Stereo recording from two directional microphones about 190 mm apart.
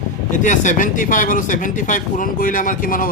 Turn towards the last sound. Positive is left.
turn(degrees=45)  # may be behind; listen again after turning